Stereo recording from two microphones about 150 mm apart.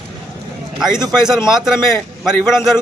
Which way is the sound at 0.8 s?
5° right (ahead or behind).